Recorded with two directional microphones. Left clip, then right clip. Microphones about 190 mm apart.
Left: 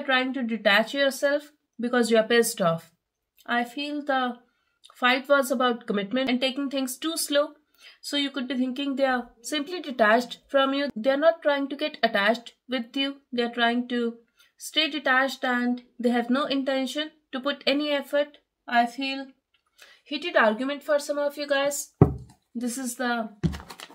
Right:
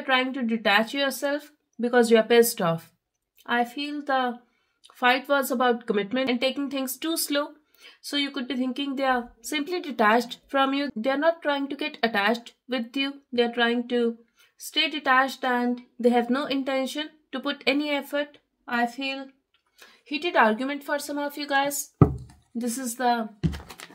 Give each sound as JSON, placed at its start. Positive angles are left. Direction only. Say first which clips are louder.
{"t": 0.0, "sound": "a woman's voice", "louder": "right 1 dB", "side_deg": -25}